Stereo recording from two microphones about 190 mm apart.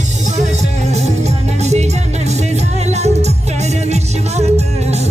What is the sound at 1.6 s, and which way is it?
Music, 35° right (ahead or behind).